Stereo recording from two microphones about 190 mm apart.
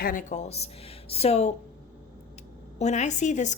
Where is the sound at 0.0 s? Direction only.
45° left (ahead or behind).